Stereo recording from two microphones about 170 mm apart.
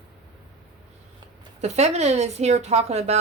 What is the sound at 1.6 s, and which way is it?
A woman's voice, 40° right (ahead or behind).